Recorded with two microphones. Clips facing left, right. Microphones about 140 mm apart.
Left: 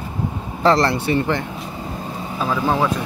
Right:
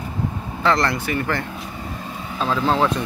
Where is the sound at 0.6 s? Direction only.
30° left (ahead or behind).